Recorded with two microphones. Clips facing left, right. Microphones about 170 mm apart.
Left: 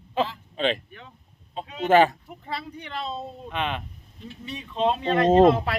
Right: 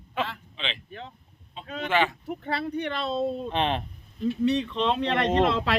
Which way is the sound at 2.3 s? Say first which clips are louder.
Right 5 dB; 65° right (ahead or behind).